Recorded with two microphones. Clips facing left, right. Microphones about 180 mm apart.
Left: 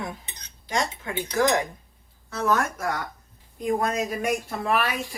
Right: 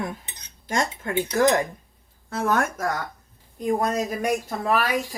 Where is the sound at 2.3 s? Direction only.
55° right (ahead or behind).